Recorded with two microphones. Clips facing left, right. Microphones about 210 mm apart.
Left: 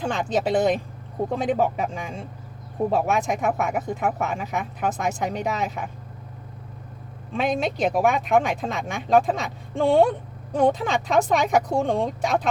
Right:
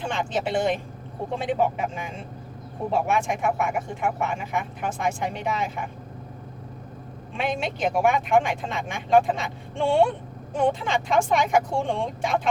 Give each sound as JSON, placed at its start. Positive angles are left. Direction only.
{"t": 0.0, "sound": "speech", "side_deg": 40}
{"t": 7.3, "sound": "speech", "side_deg": 35}